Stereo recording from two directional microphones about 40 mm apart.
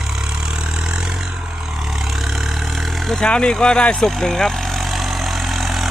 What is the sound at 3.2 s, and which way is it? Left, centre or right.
Speech, centre.